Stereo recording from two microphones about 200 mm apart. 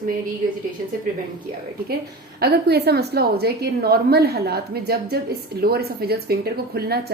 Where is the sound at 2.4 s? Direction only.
55° right (ahead or behind).